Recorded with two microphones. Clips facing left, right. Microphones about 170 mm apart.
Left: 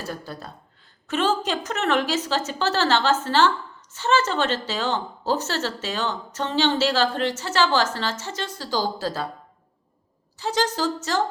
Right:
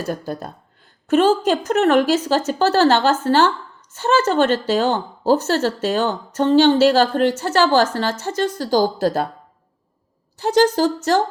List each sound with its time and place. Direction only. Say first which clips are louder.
0.1 s a woman's voice: right 8 dB; 50° right (ahead or behind)
10.4 s a woman's voice: right 8 dB; 55° right (ahead or behind)